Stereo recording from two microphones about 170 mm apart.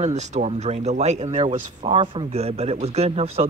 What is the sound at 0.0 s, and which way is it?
Speech, 40° right (ahead or behind).